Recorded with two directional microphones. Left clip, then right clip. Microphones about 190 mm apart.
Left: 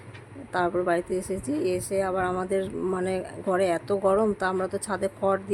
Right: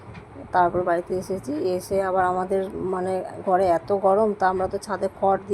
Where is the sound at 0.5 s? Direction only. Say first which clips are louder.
Right 5 dB; 10° left (ahead or behind).